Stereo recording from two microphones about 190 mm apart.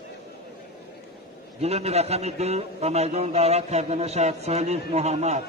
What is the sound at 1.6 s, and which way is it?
A man's voice, 35° right (ahead or behind).